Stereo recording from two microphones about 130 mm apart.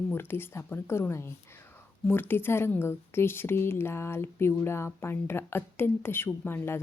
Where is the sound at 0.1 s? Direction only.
15° left (ahead or behind).